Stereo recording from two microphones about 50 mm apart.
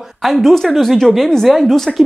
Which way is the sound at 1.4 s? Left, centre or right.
Centre.